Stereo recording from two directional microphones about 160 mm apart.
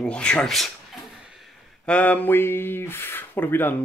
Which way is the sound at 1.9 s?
10° left (ahead or behind).